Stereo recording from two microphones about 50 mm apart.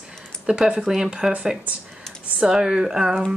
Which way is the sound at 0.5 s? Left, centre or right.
Centre.